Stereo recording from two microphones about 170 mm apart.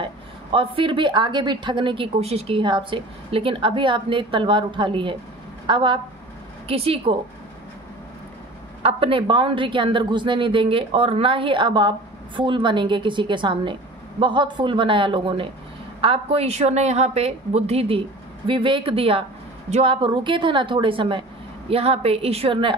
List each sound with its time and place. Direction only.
0.5 s a woman's voice: 30° right (ahead or behind)
8.8 s a woman's voice: 35° right (ahead or behind)